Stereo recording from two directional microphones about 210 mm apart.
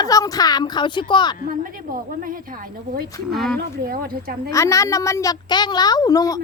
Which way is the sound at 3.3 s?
Centre (ahead or behind).